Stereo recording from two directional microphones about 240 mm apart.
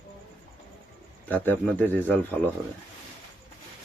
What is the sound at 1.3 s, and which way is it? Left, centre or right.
Speech, centre.